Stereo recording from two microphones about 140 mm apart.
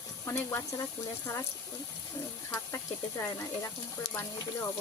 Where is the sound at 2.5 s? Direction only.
15° left (ahead or behind).